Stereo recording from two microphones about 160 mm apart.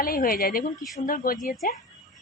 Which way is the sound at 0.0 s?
65° left (ahead or behind).